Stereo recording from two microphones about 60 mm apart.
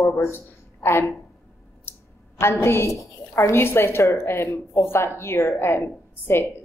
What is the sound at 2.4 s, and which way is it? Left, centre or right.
A woman's voice, left.